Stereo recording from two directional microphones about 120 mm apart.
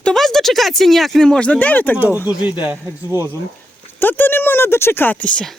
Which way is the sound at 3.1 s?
20° right (ahead or behind).